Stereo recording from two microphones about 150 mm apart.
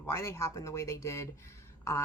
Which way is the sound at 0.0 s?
15° left (ahead or behind).